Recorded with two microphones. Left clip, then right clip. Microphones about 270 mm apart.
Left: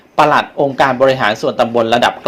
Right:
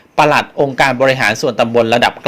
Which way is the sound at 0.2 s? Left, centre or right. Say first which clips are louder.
Even; right.